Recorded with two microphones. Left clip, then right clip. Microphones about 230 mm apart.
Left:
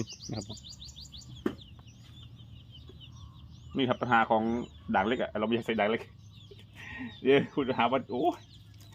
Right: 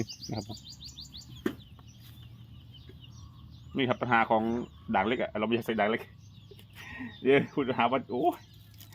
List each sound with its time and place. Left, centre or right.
0.0 s bird: centre
1.5 s a sound: right
3.7 s speech: centre